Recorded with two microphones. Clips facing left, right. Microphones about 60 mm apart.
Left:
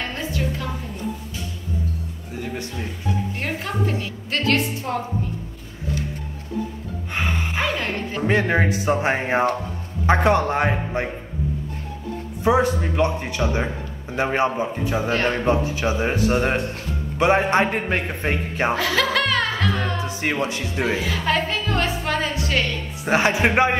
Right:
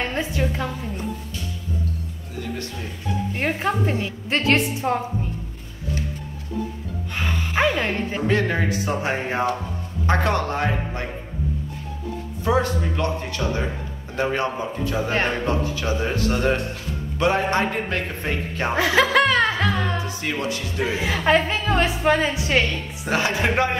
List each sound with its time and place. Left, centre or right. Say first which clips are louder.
0.1 s a sound: right 2 dB; right
3.3 s a woman's voice: right 3 dB; right
7.1 s music: left 2 dB; left
7.5 s speech: right 6 dB; right
8.3 s a man's voice: left 3 dB; left
12.4 s a man's voice: left 3 dB; left
18.8 s chuckle: right 3 dB; right
20.0 s music: left 3 dB; left
20.3 s a man's voice: left 1 dB; left
21.1 s a woman's voice: right 3 dB; right
23.0 s a man's voice: left 3 dB; left